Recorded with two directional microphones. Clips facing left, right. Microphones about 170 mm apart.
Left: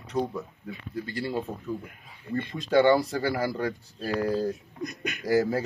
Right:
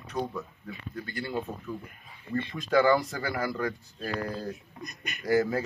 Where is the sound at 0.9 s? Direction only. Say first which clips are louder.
Left 4 dB; 30° left (ahead or behind).